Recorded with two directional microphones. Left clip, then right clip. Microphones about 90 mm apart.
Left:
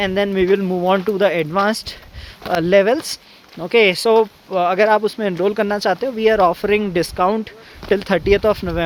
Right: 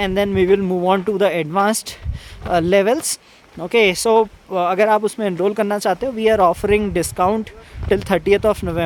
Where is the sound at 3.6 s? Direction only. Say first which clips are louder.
Left 1 dB; 35° right (ahead or behind).